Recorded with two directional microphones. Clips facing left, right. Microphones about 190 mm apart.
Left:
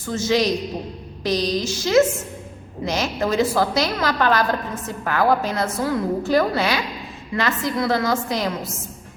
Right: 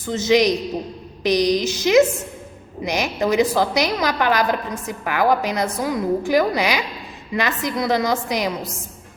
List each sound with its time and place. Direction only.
0.1 s a woman's voice: 20° right (ahead or behind)